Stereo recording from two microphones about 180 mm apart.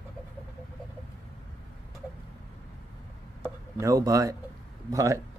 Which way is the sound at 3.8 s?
20° right (ahead or behind).